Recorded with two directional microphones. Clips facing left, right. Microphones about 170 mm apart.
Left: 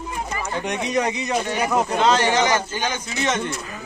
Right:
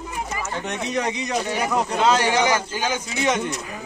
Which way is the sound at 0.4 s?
15° left (ahead or behind).